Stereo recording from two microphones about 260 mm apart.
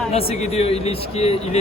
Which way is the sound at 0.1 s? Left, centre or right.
Left.